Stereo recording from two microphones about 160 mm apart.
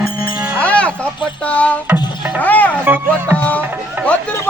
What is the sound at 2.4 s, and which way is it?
Music, 10° left (ahead or behind).